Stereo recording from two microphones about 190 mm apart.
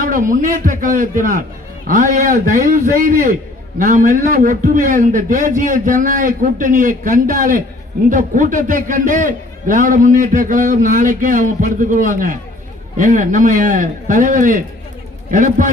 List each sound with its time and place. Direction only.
0.1 s a man's voice: 45° right (ahead or behind)